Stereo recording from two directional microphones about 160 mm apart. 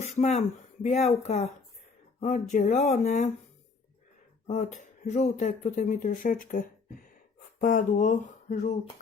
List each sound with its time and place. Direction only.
0.0 s speech: 45° left (ahead or behind)
4.4 s speech: 45° left (ahead or behind)